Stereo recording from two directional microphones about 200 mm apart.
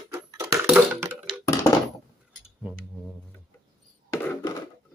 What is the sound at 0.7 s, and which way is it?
Computer keyboard, 15° right (ahead or behind).